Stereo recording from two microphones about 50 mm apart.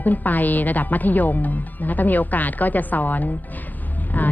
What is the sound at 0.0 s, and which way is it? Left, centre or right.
A woman's voice, left.